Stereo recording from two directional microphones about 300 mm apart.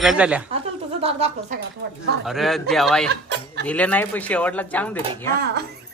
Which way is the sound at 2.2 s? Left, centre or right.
Centre.